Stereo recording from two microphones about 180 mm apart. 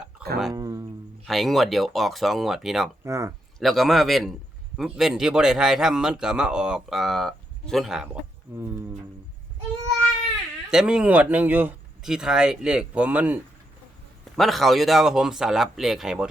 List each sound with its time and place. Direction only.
0.2 s guitar: 5° right (ahead or behind)
0.5 s speech: 20° right (ahead or behind)
1.3 s speech: centre (ahead or behind)
3.0 s speech: 15° right (ahead or behind)
3.6 s speech: centre (ahead or behind)
8.5 s speech: 15° right (ahead or behind)
10.7 s speech: 5° right (ahead or behind)